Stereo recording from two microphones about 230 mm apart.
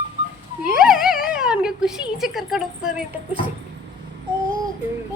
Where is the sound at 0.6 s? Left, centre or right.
Centre.